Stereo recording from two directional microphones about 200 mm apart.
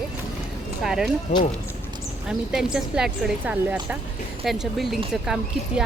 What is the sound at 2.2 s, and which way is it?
Speech, 5° right (ahead or behind).